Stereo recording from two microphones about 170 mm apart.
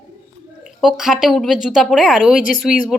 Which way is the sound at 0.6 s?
5° right (ahead or behind).